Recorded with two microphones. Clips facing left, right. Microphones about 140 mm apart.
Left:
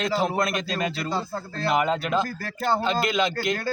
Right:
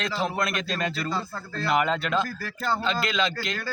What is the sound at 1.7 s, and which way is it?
A man's voice, 5° left (ahead or behind).